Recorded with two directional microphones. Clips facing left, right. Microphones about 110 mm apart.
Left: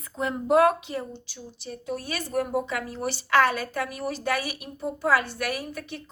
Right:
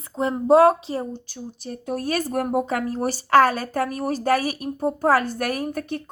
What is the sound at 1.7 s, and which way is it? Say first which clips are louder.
Speech: right 6 dB; 50° right (ahead or behind).